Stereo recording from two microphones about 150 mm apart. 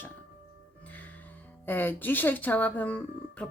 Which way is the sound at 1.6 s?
15° left (ahead or behind).